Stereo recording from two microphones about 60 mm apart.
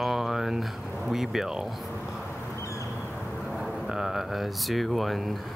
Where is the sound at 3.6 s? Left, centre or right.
Centre.